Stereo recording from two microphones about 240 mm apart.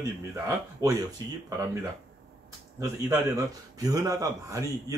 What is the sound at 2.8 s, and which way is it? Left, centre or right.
Speech, centre.